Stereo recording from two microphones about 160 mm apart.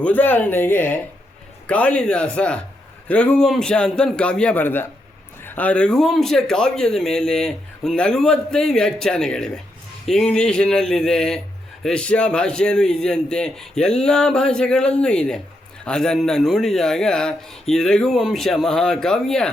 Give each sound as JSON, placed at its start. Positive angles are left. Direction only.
{"t": 0.0, "sound": "a man's voice", "side_deg": 10}